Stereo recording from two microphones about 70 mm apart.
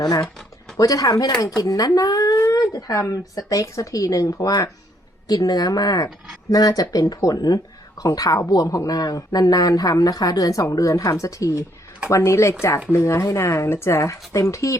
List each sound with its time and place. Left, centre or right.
0.0 s speech: left
2.4 s speech: left
5.3 s speech: left
6.1 s speech: centre
6.5 s speech: left